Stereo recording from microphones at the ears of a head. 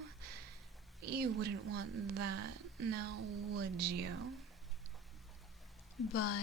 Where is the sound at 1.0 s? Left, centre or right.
Right.